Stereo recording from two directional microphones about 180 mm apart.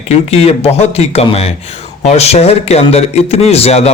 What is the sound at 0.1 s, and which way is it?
Speech, 35° left (ahead or behind).